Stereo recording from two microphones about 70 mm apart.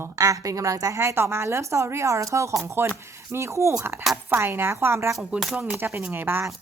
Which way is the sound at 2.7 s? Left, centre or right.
Right.